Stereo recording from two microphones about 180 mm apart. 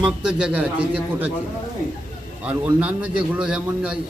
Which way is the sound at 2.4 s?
10° right (ahead or behind).